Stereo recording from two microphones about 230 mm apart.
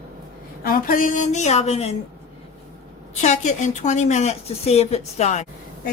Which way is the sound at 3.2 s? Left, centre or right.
Left.